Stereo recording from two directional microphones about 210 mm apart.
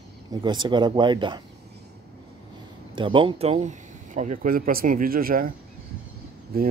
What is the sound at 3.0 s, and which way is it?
Speech, 25° right (ahead or behind).